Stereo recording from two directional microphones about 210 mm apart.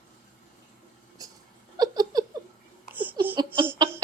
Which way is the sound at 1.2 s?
20° right (ahead or behind).